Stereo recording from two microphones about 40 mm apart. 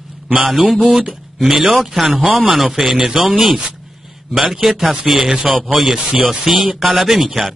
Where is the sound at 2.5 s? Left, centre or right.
Centre.